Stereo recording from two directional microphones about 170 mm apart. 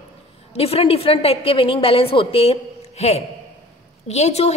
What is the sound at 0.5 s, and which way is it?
A man's voice, 35° left (ahead or behind).